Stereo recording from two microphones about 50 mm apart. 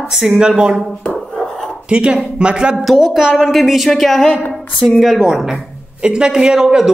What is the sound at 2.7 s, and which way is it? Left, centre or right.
A woman's voice, centre.